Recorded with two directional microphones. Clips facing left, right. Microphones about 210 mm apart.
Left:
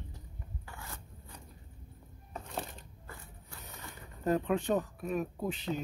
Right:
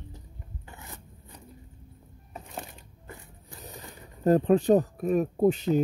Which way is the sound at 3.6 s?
35° right (ahead or behind).